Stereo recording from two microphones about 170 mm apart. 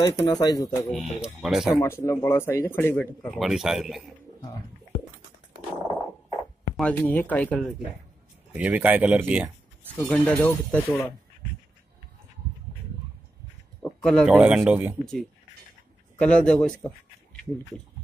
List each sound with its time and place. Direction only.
0.0 s speech: 25° left (ahead or behind)
0.8 s a man's voice: centre (ahead or behind)
1.8 s speech: 15° left (ahead or behind); by 4.1 s centre (ahead or behind)
6.8 s speech: 10° left (ahead or behind)
8.5 s speech: 10° right (ahead or behind)
10.0 s speech: 5° left (ahead or behind)
13.8 s a man's voice: 5° left (ahead or behind)
16.2 s a man's voice: 5° left (ahead or behind)